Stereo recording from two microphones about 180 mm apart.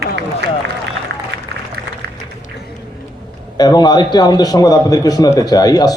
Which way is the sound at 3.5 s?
20° left (ahead or behind).